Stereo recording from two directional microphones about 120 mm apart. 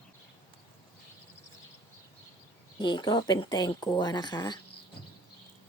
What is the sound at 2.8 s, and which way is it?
Speech, 40° left (ahead or behind).